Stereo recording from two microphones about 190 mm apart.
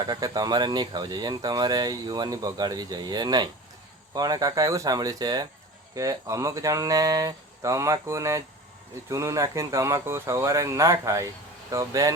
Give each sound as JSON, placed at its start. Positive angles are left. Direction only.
{"t": 0.0, "sound": "speech", "side_deg": -20}